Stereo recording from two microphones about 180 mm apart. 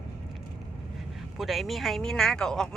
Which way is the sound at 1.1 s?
Centre (ahead or behind).